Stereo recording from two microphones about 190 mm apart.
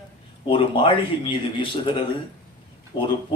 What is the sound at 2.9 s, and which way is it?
Speech, 25° left (ahead or behind).